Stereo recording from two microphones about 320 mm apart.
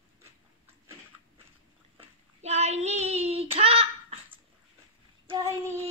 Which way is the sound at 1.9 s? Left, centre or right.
Centre.